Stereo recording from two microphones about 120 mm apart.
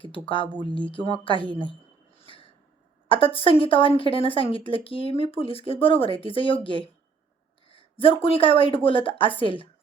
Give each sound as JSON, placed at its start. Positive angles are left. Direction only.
{"t": 0.0, "sound": "speech", "side_deg": 45}
{"t": 2.1, "sound": "snort", "side_deg": 50}
{"t": 3.1, "sound": "speech", "side_deg": 50}